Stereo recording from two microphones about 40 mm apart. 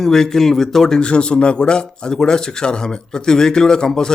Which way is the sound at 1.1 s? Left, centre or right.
Left.